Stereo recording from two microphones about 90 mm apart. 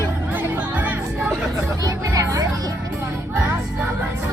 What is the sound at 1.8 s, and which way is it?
Speech, 40° right (ahead or behind).